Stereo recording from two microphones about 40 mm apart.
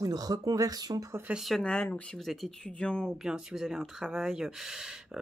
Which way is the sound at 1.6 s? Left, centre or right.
Left.